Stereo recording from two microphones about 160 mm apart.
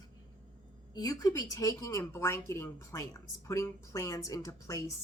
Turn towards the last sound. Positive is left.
turn(degrees=20)  # may be behind; listen again after turning